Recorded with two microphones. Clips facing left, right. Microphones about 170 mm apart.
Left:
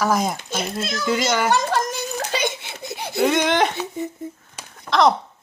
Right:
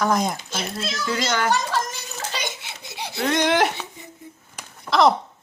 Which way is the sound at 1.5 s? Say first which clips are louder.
Left 4 dB; 55° left (ahead or behind).